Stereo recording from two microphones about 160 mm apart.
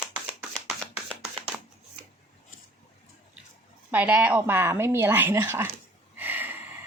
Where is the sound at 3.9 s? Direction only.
10° right (ahead or behind).